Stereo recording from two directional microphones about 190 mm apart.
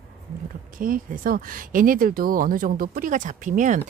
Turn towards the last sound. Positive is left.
turn(degrees=-40)  # may be behind; listen again after turning